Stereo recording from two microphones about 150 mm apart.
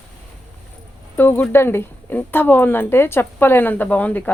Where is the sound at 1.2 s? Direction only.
10° left (ahead or behind).